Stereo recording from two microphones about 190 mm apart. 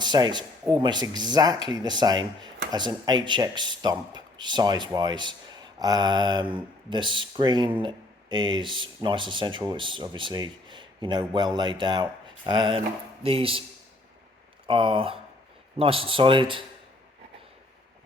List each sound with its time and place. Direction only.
0.0 s speech: 25° right (ahead or behind)
14.7 s speech: 25° right (ahead or behind)